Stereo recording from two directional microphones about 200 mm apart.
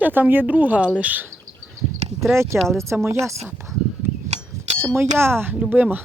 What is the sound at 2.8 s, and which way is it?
Speech, 15° right (ahead or behind).